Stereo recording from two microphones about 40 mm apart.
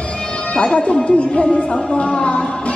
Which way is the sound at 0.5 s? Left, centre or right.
Left.